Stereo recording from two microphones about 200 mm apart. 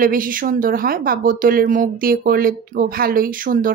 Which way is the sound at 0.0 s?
45° right (ahead or behind).